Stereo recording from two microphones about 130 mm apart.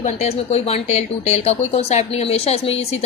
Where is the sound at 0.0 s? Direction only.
55° left (ahead or behind).